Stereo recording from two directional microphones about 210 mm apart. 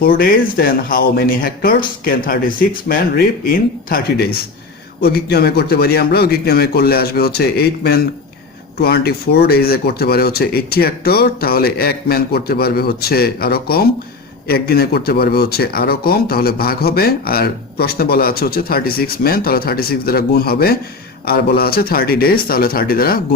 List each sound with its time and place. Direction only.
0.0 s speech: 45° left (ahead or behind)